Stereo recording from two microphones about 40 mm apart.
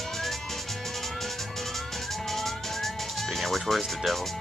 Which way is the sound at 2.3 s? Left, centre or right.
Centre.